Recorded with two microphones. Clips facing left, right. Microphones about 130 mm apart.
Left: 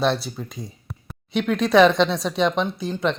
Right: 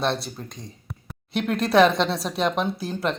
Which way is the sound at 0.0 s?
Centre (ahead or behind).